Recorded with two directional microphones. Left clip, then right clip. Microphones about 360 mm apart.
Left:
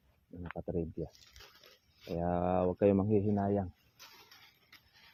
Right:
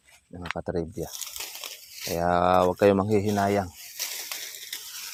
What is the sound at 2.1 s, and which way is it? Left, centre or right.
Speech, right.